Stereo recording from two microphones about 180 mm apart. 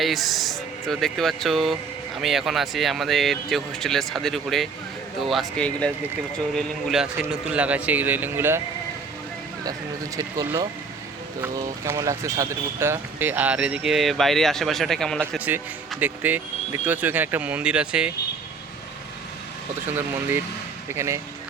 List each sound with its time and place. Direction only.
0.0 s speech: centre (ahead or behind)
10.2 s speech: 25° right (ahead or behind); by 15.2 s centre (ahead or behind)
15.3 s speech: 10° right (ahead or behind)
20.9 s speech: 15° right (ahead or behind)